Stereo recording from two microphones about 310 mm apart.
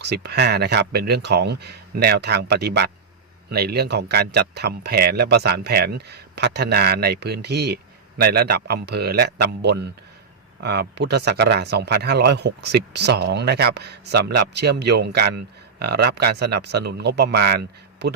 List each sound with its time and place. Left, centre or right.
0.0 s speech: right